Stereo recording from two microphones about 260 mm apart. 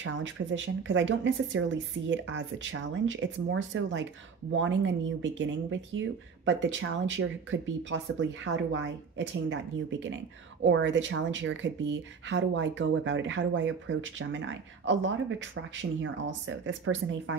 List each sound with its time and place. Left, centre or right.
0.0 s speech: right